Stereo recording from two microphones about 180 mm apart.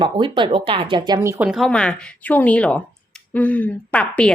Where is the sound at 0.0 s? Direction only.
25° right (ahead or behind).